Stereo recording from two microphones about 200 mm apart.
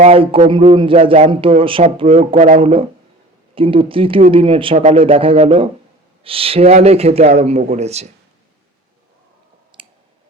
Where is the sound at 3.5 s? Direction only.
25° right (ahead or behind).